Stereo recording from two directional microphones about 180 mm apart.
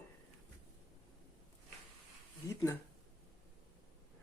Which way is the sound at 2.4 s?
15° left (ahead or behind).